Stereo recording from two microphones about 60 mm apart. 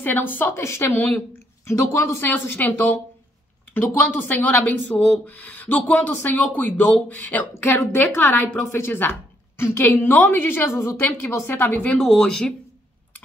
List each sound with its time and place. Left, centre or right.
0.0 s a woman's voice: left
0.9 s a woman's voice: left
1.7 s a woman's voice: left
2.2 s a woman's voice: left
7.5 s a woman's voice: left
8.2 s a woman's voice: left
9.9 s a woman's voice: left
12.0 s speech: centre